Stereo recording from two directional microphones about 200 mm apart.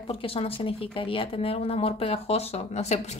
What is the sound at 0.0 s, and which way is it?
Speech, 30° left (ahead or behind).